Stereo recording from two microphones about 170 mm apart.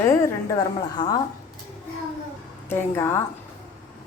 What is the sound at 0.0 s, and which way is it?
A woman's voice, 20° left (ahead or behind).